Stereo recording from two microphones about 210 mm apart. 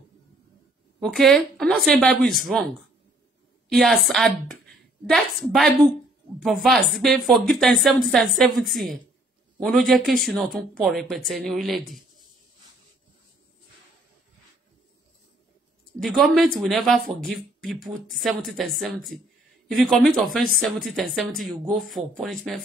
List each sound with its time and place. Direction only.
1.0 s a woman's voice: centre (ahead or behind)
16.0 s speech: centre (ahead or behind)